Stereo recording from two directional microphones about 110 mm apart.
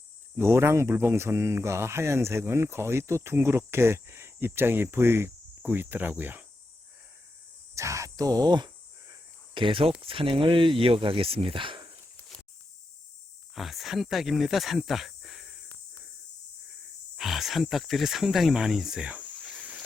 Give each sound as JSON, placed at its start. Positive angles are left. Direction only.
{"t": 0.3, "sound": "speech", "side_deg": -20}
{"t": 7.8, "sound": "speech", "side_deg": -30}
{"t": 9.6, "sound": "speech", "side_deg": -50}
{"t": 13.6, "sound": "speech", "side_deg": 0}
{"t": 17.2, "sound": "speech", "side_deg": 0}